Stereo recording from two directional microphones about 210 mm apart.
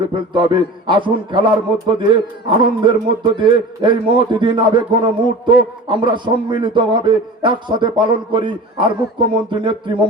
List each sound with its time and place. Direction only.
0.1 s a man's voice: 25° right (ahead or behind)
2.5 s a man's voice: 25° right (ahead or behind)